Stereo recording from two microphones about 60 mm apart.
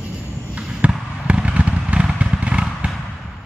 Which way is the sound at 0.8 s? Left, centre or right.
Right.